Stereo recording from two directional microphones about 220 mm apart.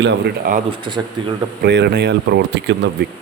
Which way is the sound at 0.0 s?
40° right (ahead or behind).